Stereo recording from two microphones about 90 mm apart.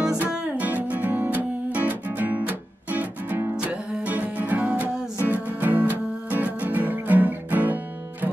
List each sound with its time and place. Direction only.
0.3 s music: 15° right (ahead or behind)